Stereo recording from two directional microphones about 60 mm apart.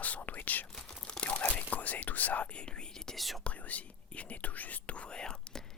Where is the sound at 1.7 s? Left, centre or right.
Left.